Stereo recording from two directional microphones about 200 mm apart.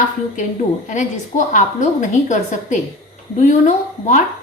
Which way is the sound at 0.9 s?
40° left (ahead or behind).